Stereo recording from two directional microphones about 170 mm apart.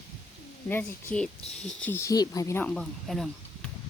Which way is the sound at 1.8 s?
15° left (ahead or behind).